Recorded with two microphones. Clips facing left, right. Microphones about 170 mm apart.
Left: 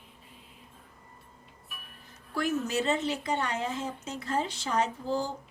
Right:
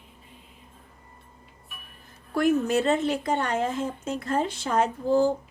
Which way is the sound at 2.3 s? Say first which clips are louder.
Right 7 dB; 55° right (ahead or behind).